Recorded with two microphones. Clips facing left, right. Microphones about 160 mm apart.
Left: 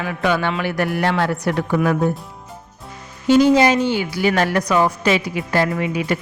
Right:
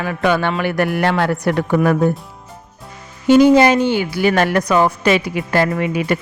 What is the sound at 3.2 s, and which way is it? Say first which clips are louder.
A woman's voice: right 3 dB; 55° right (ahead or behind).